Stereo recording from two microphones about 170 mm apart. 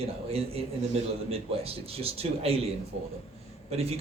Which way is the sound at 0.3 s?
35° right (ahead or behind).